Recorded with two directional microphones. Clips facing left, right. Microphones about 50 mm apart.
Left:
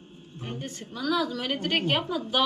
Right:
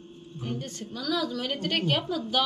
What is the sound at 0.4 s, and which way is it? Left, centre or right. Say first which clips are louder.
A woman's voice: right 2 dB; centre.